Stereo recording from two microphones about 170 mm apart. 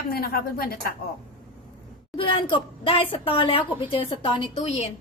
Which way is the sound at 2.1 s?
30° left (ahead or behind).